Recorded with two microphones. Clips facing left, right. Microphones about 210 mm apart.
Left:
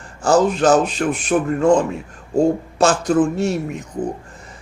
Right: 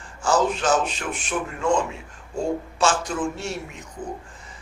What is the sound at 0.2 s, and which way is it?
A man's voice, 40° left (ahead or behind).